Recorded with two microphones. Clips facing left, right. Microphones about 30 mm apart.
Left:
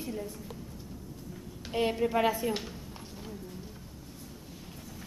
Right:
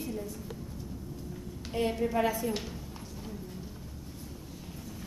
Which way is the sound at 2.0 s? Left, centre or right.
Left.